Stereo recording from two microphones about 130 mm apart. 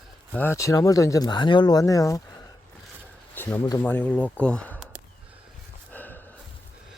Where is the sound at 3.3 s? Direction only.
15° left (ahead or behind).